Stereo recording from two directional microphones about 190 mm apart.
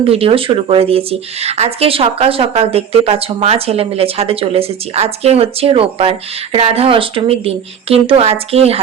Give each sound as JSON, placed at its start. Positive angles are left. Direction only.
{"t": 0.1, "sound": "speech", "side_deg": -30}